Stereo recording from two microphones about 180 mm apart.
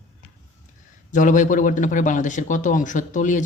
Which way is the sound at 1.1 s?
45° left (ahead or behind).